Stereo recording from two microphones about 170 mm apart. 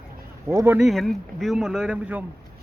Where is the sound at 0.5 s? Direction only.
15° right (ahead or behind).